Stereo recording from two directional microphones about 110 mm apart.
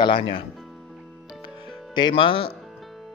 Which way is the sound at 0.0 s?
50° left (ahead or behind).